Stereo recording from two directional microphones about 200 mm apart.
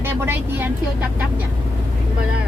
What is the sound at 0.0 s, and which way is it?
Vehicle, 10° right (ahead or behind).